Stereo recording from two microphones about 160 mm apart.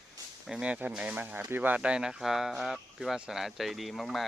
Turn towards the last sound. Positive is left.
turn(degrees=0)  # may be behind; listen again after turning